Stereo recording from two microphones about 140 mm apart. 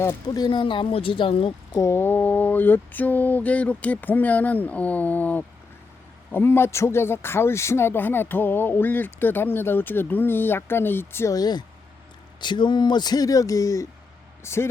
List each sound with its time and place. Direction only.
0.3 s speech: 30° left (ahead or behind)
1.7 s speech: 20° left (ahead or behind)